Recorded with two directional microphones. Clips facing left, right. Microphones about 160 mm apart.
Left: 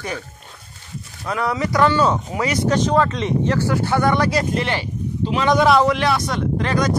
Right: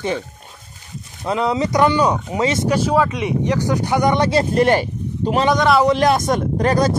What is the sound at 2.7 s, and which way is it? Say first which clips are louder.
Speech: left 2 dB; 10° right (ahead or behind).